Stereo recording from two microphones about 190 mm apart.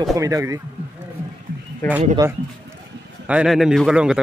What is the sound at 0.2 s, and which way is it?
Speech, 15° right (ahead or behind).